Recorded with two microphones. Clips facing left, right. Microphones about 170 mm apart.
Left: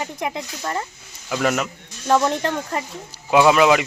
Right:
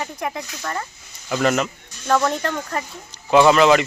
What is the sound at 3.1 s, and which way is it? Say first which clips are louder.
Speech: right 1 dB; 10° left (ahead or behind).